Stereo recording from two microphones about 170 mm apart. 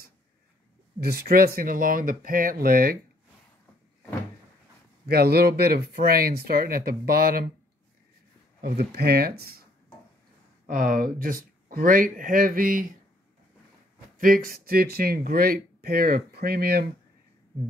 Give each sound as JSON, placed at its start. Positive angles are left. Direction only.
{"t": 1.0, "sound": "speech", "side_deg": -65}
{"t": 5.0, "sound": "speech", "side_deg": -65}
{"t": 8.5, "sound": "speech", "side_deg": -65}
{"t": 10.7, "sound": "speech", "side_deg": -55}
{"t": 14.1, "sound": "speech", "side_deg": -55}